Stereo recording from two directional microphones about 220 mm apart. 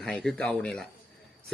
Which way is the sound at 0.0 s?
5° left (ahead or behind).